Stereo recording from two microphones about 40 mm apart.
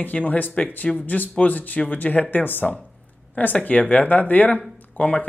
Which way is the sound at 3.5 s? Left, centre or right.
Left.